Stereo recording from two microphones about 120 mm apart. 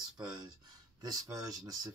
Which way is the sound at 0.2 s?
35° right (ahead or behind).